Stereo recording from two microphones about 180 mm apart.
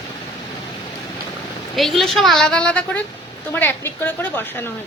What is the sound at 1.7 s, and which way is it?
A woman's voice, centre (ahead or behind).